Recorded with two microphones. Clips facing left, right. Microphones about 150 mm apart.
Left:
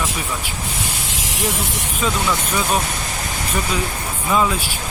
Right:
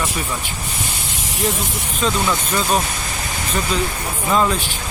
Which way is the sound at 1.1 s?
90° left.